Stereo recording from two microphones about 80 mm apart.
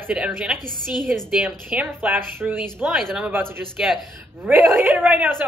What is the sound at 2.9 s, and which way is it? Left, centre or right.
Speech, centre.